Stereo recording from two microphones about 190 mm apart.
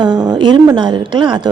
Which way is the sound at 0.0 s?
20° right (ahead or behind).